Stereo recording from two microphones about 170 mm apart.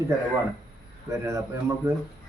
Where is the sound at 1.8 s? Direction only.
15° right (ahead or behind).